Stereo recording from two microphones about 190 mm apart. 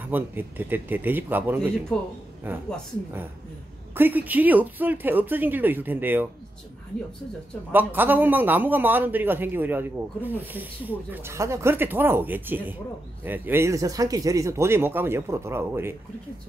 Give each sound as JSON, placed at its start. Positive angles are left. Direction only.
{"t": 0.1, "sound": "a man's voice", "side_deg": -10}
{"t": 3.9, "sound": "a man's voice", "side_deg": -10}
{"t": 7.7, "sound": "a man's voice", "side_deg": -10}